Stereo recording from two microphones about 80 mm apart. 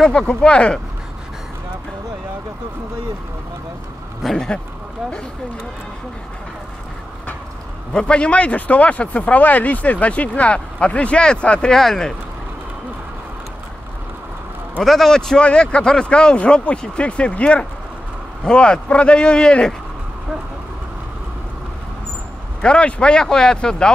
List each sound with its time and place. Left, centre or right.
0.0 s speech: centre
4.2 s speech: centre
7.9 s speech: centre
14.8 s speech: centre
22.6 s speech: centre